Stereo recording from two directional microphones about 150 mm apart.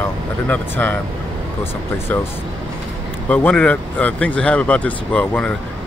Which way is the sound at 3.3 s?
10° left (ahead or behind).